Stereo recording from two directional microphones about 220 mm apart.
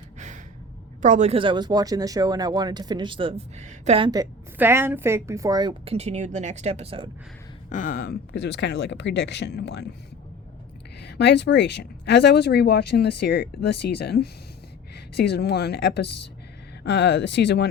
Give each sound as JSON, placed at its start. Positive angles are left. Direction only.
{"t": 1.0, "sound": "speech", "side_deg": -30}
{"t": 7.7, "sound": "speech", "side_deg": 35}
{"t": 11.0, "sound": "speech", "side_deg": 50}